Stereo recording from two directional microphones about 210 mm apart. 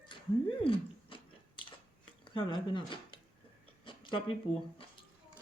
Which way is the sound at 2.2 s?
25° left (ahead or behind).